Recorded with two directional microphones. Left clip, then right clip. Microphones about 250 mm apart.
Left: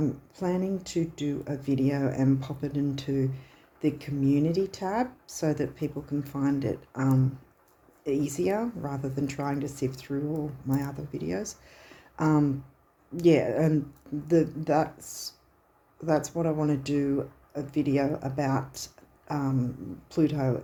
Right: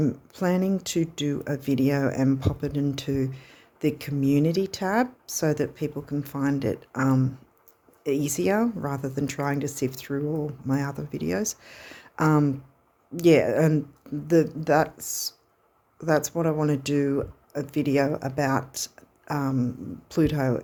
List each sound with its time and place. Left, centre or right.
0.0 s speech: right